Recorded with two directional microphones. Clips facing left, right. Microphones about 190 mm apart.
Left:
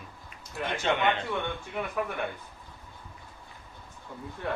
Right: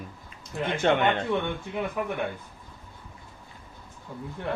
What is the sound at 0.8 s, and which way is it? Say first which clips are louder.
Speech: right 5 dB; 50° right (ahead or behind).